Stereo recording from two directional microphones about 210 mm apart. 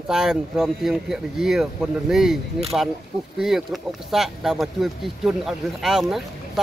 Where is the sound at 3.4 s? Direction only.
Centre (ahead or behind).